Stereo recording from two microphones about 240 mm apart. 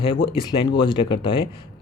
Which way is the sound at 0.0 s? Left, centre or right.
Left.